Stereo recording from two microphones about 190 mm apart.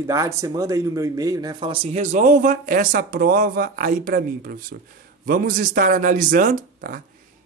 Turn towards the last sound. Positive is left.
turn(degrees=-50)  # may be behind; listen again after turning